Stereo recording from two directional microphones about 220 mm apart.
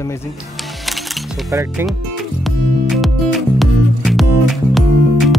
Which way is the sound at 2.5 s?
Centre (ahead or behind).